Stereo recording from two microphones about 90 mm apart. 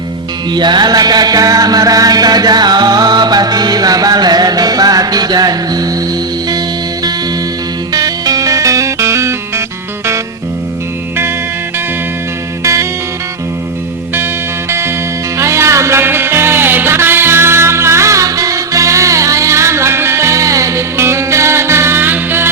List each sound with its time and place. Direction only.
0.5 s music: 55° right (ahead or behind)
7.9 s music: 45° right (ahead or behind)
12.6 s music: 35° right (ahead or behind)
14.7 s music: 30° right (ahead or behind)